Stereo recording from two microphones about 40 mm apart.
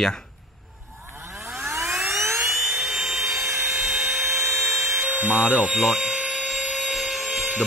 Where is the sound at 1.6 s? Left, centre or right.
Right.